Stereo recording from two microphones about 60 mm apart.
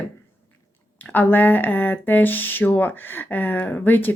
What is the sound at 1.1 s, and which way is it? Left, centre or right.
Speech, left.